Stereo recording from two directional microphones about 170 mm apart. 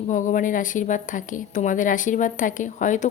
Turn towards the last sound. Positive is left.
turn(degrees=50)  # may be behind; listen again after turning